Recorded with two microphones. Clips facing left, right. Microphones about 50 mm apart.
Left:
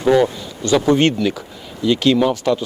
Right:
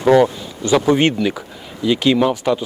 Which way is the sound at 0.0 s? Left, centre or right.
Centre.